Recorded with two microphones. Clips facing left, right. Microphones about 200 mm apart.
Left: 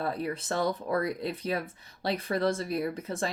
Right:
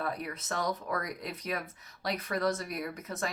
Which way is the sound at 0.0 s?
30° left (ahead or behind).